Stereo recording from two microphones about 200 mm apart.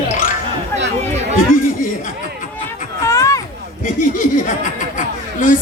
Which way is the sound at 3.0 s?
15° left (ahead or behind).